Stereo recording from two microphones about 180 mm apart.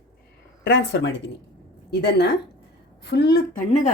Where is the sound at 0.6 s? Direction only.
80° left.